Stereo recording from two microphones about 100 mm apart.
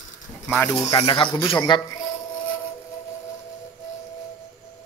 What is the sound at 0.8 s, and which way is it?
Speech, 45° left (ahead or behind).